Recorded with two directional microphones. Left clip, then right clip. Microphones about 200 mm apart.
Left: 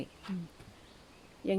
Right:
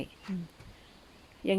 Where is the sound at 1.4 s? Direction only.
30° right (ahead or behind).